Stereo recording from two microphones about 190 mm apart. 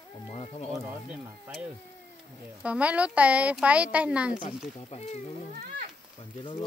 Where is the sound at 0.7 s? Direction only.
Centre (ahead or behind).